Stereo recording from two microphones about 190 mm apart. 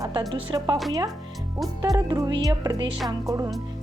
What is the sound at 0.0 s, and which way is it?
Speech, 20° right (ahead or behind).